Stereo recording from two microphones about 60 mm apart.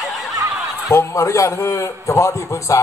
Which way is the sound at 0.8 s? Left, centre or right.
Left.